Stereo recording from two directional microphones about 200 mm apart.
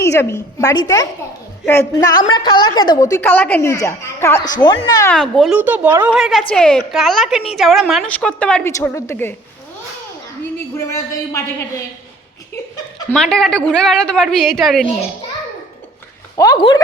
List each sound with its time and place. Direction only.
0.0 s a woman's voice: 15° left (ahead or behind)
5.1 s a woman's voice: 5° left (ahead or behind)
10.8 s a woman's voice: 15° left (ahead or behind)
13.1 s a woman's voice: centre (ahead or behind)
16.4 s speech: 20° left (ahead or behind)